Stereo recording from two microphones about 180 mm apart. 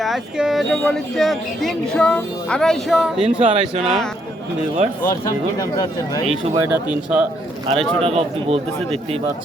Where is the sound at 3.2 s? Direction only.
35° right (ahead or behind).